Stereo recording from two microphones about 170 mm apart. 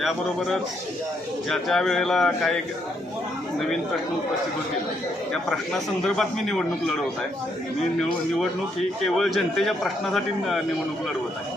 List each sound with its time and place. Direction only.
0.0 s a man's voice: centre (ahead or behind)
5.3 s a man's voice: centre (ahead or behind)
9.0 s a man's voice: centre (ahead or behind)